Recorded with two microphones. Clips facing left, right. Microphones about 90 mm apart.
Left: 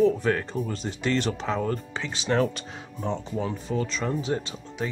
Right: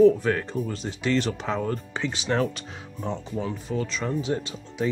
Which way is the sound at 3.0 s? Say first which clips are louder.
Left 1 dB; 15° left (ahead or behind).